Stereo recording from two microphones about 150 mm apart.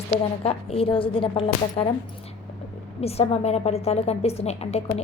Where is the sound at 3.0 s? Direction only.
40° left (ahead or behind).